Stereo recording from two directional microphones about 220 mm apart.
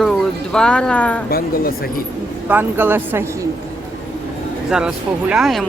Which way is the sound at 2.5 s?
10° right (ahead or behind).